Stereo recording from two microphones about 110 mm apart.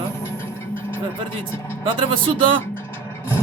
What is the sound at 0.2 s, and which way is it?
Music, 20° left (ahead or behind).